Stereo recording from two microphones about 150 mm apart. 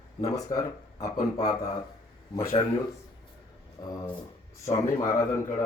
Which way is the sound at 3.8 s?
25° left (ahead or behind).